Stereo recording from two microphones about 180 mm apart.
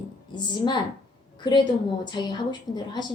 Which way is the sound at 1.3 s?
25° left (ahead or behind).